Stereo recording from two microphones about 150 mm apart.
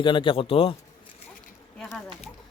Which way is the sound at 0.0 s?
35° left (ahead or behind).